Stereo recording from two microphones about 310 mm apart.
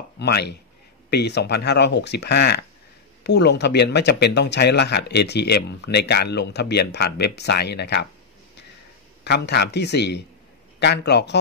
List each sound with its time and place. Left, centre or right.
0.2 s speech: left
9.2 s speech: left